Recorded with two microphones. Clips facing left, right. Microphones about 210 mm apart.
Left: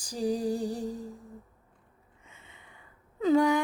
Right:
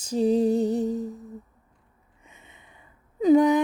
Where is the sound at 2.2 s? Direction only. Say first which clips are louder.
Right 3 dB; 20° right (ahead or behind).